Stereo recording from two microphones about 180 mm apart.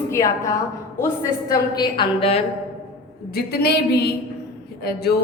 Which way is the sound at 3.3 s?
60° left (ahead or behind).